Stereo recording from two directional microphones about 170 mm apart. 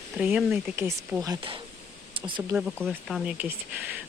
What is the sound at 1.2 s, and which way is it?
Speech, 25° right (ahead or behind).